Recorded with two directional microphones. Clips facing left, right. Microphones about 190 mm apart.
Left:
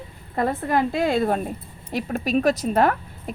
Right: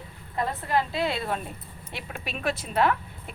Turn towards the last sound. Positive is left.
turn(degrees=45)  # may be behind; listen again after turning